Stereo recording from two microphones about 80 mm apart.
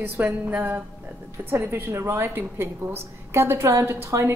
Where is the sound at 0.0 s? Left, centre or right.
Centre.